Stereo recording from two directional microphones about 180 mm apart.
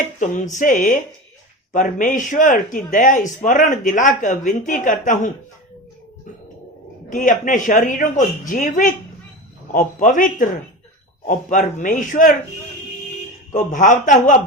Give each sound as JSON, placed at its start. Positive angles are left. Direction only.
{"t": 0.0, "sound": "speech", "side_deg": 45}
{"t": 7.1, "sound": "speech", "side_deg": 45}
{"t": 13.5, "sound": "speech", "side_deg": 45}